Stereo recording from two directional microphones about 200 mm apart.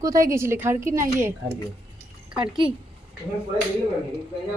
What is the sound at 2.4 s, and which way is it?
Speech, 25° right (ahead or behind).